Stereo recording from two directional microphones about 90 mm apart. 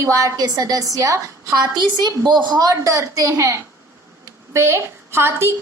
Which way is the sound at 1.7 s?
50° right (ahead or behind).